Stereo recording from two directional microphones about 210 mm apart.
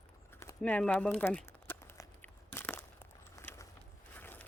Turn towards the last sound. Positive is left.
turn(degrees=10)  # may be behind; listen again after turning